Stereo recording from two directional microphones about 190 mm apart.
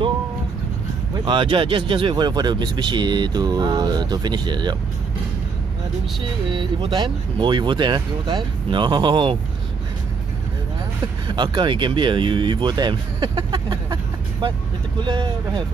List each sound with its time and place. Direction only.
1.2 s speech: 25° right (ahead or behind)
6.5 s speech: 25° right (ahead or behind)
11.2 s speech: 25° right (ahead or behind)
15.0 s speech: 25° right (ahead or behind)